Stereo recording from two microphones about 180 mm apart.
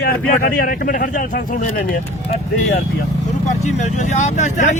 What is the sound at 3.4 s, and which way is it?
Speech, 40° left (ahead or behind).